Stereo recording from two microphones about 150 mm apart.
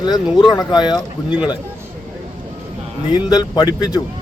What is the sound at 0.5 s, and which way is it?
Speech, 30° left (ahead or behind).